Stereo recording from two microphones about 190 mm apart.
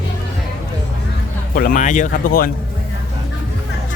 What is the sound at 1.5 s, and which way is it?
Speech, 45° left (ahead or behind).